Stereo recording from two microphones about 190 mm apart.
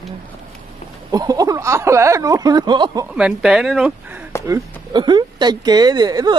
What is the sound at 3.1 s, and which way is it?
Speech, 5° right (ahead or behind).